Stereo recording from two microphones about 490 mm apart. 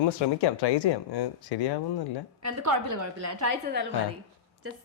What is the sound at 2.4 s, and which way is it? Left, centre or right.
A woman's voice, right.